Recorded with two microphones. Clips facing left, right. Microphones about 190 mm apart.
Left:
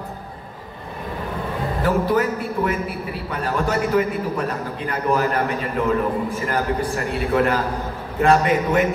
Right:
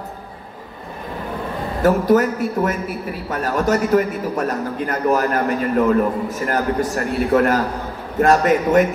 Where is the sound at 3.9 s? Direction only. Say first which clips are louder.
Right 2 dB; 45° right (ahead or behind).